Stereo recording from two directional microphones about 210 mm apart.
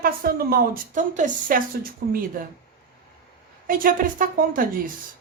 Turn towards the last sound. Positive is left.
turn(degrees=-40)  # may be behind; listen again after turning